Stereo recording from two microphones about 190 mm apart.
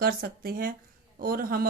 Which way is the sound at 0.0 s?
50° right (ahead or behind).